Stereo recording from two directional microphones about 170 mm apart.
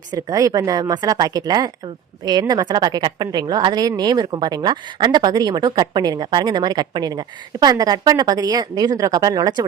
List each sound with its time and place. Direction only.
0.1 s a woman's voice: 20° right (ahead or behind)